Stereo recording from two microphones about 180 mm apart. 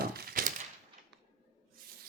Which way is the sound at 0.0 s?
55° right (ahead or behind).